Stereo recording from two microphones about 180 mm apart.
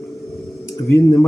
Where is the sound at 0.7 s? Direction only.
20° left (ahead or behind).